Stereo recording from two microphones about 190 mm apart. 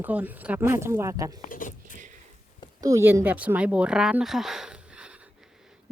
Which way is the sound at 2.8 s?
15° right (ahead or behind).